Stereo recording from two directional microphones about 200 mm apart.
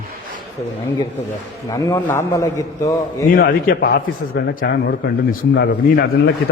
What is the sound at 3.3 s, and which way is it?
A man's voice, 45° left (ahead or behind).